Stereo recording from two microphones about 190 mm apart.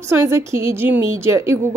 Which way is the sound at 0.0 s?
15° right (ahead or behind).